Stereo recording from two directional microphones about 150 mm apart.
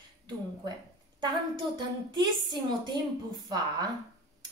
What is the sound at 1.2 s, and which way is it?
Speech, 30° right (ahead or behind).